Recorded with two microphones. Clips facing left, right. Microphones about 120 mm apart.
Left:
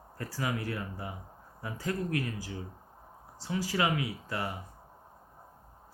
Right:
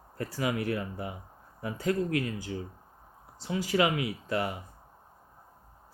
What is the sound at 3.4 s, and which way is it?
Speech, 25° right (ahead or behind).